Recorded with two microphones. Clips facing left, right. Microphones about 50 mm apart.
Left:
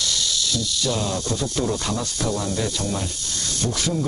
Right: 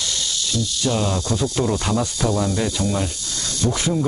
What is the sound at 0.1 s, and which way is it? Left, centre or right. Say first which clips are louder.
Speech: even; right.